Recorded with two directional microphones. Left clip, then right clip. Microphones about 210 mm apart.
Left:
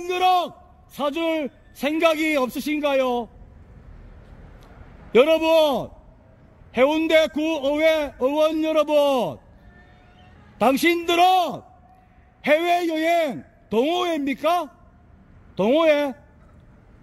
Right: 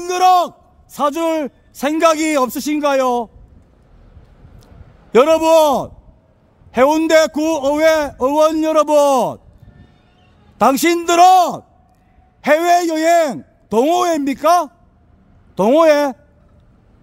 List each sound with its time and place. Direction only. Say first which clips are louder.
0.0 s a man's voice: right 7 dB; 30° right (ahead or behind)
5.1 s a man's voice: right 6 dB; 30° right (ahead or behind)
10.6 s a man's voice: right 6 dB; 35° right (ahead or behind)